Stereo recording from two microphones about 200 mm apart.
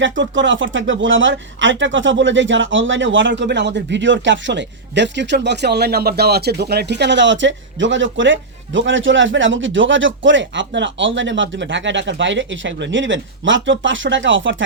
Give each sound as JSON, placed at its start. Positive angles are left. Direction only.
{"t": 0.0, "sound": "speech", "side_deg": -65}